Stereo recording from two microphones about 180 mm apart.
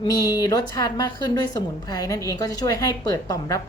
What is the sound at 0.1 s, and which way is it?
A woman's voice, 20° left (ahead or behind).